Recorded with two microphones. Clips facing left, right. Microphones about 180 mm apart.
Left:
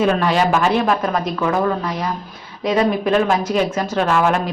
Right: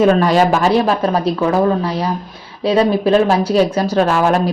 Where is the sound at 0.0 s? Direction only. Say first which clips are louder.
Right 5 dB; 40° right (ahead or behind).